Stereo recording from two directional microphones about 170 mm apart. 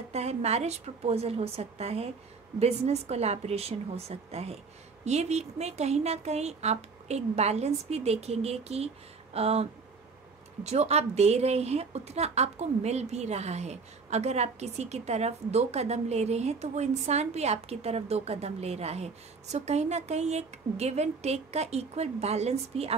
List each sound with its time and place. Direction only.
0.1 s a woman's voice: 40° right (ahead or behind)